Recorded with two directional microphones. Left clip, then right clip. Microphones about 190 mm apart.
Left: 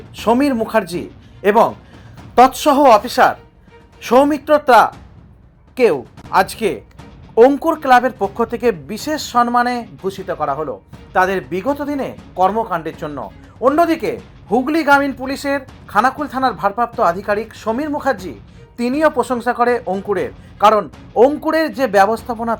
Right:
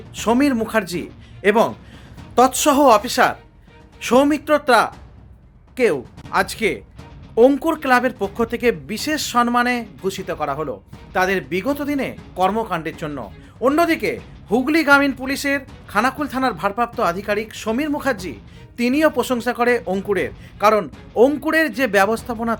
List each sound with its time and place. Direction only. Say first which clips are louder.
0.2 s speech: left 3 dB; 5° right (ahead or behind)